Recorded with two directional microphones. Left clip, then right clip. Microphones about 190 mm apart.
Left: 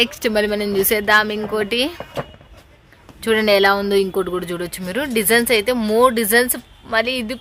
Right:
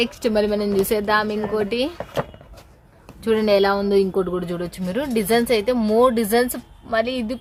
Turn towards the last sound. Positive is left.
turn(degrees=0)  # may be behind; listen again after turning